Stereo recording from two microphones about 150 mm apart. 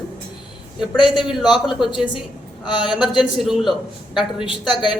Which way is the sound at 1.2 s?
5° right (ahead or behind).